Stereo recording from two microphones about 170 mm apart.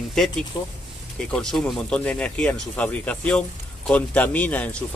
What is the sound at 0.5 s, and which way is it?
Speech, 25° left (ahead or behind).